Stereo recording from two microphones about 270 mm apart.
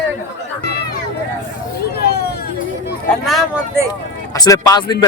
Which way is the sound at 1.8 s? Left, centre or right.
Left.